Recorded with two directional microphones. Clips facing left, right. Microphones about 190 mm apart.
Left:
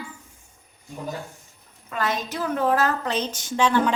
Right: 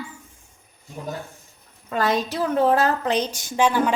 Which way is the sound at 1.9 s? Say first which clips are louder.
Right 5 dB; 35° right (ahead or behind).